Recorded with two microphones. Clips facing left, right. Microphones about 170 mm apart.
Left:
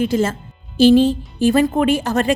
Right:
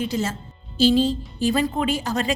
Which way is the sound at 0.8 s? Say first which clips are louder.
Left 7 dB; 60° left (ahead or behind).